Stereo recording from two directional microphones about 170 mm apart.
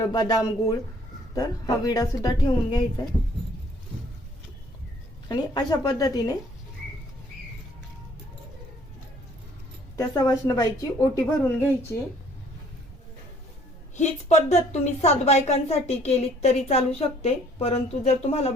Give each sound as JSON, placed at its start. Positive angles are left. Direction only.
{"t": 0.1, "sound": "speech", "side_deg": 20}
{"t": 5.3, "sound": "speech", "side_deg": 25}
{"t": 10.0, "sound": "speech", "side_deg": 20}
{"t": 13.9, "sound": "a woman's voice", "side_deg": 40}